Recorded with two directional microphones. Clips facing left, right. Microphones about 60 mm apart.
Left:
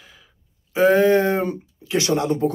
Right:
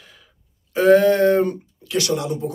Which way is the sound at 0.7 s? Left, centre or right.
Centre.